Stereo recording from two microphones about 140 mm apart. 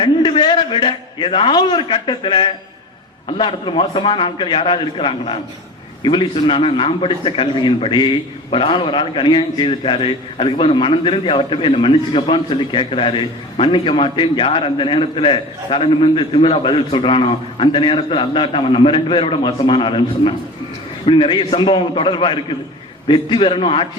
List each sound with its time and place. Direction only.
0.0 s a man's voice: 40° left (ahead or behind)